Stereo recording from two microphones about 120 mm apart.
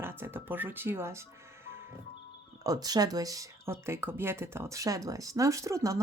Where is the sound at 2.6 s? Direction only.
30° right (ahead or behind).